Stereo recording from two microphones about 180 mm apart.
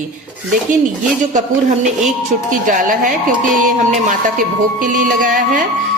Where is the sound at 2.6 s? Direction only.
45° right (ahead or behind).